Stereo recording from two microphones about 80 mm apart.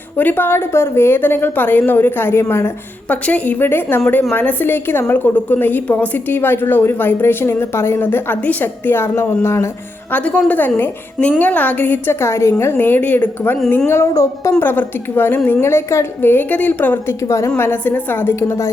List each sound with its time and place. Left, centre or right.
0.2 s a woman's voice: left
3.1 s a woman's voice: centre; by 9.6 s left
10.1 s a woman's voice: centre; by 14.1 s left
14.1 s speech: left
14.6 s a woman's voice: left
15.6 s a woman's voice: left
17.2 s a woman's voice: left
17.6 s a woman's voice: left